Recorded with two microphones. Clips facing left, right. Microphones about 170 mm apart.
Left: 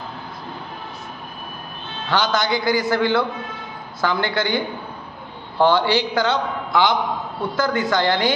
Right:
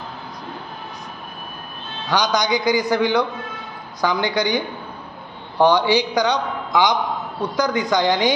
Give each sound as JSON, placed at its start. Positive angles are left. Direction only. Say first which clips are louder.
{"t": 2.0, "sound": "a man's voice", "louder": "right 1 dB", "side_deg": -15}